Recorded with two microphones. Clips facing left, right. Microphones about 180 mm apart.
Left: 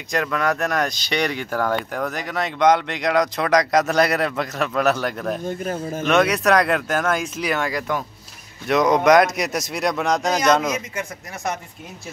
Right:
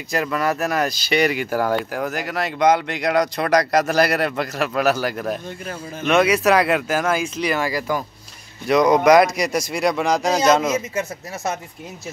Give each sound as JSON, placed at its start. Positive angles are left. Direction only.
{"t": 0.1, "sound": "speech", "side_deg": -5}
{"t": 5.4, "sound": "speech", "side_deg": 45}
{"t": 6.0, "sound": "speech", "side_deg": -5}
{"t": 10.7, "sound": "speech", "side_deg": -25}